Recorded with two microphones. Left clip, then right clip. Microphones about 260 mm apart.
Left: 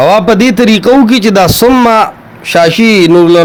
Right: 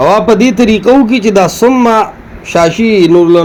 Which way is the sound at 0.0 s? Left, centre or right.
Left.